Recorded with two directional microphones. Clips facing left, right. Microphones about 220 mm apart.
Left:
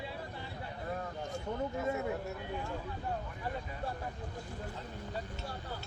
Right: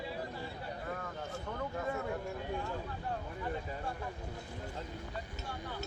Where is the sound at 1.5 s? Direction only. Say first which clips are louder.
Left 5 dB; 20° left (ahead or behind).